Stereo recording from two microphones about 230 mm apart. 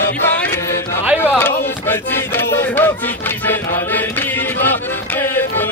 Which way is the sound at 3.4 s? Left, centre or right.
Centre.